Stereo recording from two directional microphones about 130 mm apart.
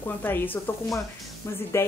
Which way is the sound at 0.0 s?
15° left (ahead or behind).